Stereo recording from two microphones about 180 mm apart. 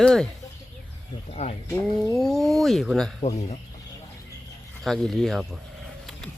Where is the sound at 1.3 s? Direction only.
35° left (ahead or behind).